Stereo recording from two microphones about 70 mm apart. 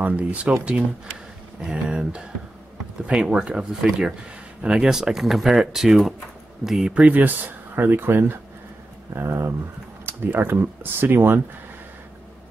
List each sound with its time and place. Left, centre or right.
0.0 s speech: right
1.7 s speech: centre
6.9 s speech: centre